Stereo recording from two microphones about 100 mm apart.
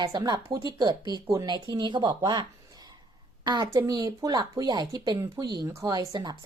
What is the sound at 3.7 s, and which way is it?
Speech, 35° right (ahead or behind).